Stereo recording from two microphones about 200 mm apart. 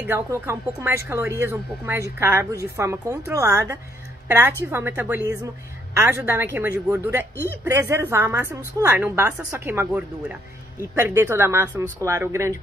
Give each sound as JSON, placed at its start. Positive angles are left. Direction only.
{"t": 0.0, "sound": "speech", "side_deg": -10}